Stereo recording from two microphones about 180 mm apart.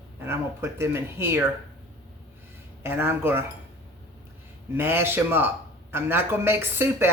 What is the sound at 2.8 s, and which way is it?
Speech, 15° right (ahead or behind).